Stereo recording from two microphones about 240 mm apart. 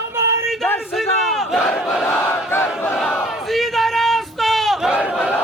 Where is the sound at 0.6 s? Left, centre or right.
Centre.